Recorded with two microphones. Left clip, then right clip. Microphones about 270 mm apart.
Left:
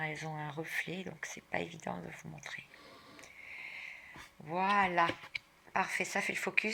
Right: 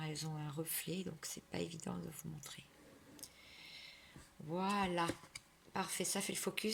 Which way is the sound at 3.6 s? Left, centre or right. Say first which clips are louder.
Left 9 dB; right.